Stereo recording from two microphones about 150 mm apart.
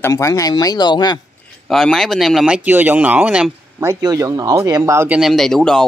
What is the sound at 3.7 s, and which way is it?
Speech, 20° right (ahead or behind).